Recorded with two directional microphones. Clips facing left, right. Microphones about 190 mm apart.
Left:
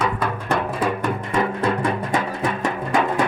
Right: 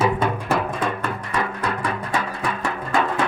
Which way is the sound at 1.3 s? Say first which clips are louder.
Left 5 dB; 25° left (ahead or behind).